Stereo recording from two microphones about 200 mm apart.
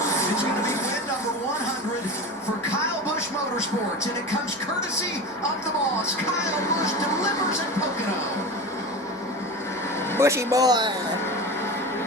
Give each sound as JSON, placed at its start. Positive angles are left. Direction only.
{"t": 10.2, "sound": "speech", "side_deg": -15}